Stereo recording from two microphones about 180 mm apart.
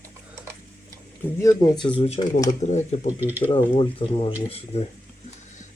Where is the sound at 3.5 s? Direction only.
30° left (ahead or behind).